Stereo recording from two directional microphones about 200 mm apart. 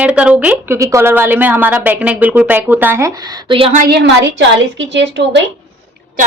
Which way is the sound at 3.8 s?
55° right (ahead or behind).